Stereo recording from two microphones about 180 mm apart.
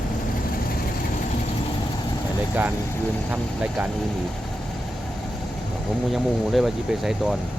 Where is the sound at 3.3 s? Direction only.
10° right (ahead or behind).